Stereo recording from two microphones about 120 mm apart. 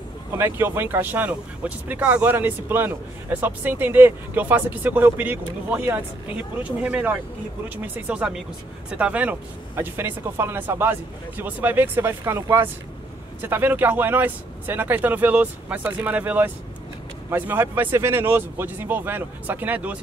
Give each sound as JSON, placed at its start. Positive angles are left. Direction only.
{"t": 0.4, "sound": "speech", "side_deg": -20}